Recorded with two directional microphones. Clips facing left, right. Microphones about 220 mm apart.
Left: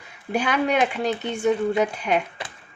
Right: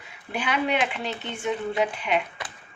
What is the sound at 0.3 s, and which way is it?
A woman's voice, 45° left (ahead or behind).